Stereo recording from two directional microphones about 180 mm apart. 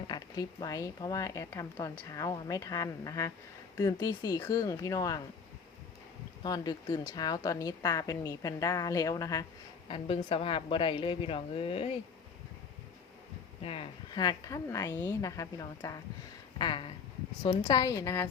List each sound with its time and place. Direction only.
0.1 s speech: 20° left (ahead or behind)
6.4 s speech: 20° left (ahead or behind)
9.9 s a woman's voice: 30° left (ahead or behind)
13.7 s speech: 30° left (ahead or behind)